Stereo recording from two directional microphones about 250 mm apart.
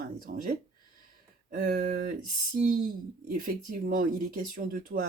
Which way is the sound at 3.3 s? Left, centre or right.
Right.